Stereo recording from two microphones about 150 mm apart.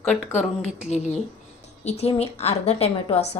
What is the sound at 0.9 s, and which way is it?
A woman's voice, 50° left (ahead or behind).